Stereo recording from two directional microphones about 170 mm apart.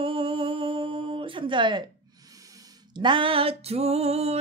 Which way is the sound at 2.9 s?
30° right (ahead or behind).